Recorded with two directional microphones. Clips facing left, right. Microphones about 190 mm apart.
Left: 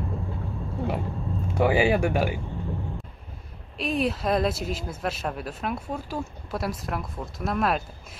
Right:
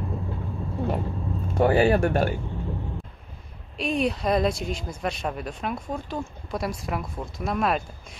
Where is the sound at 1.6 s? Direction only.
10° left (ahead or behind).